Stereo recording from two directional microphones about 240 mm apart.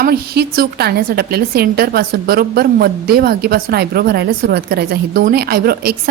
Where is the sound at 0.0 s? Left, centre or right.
Right.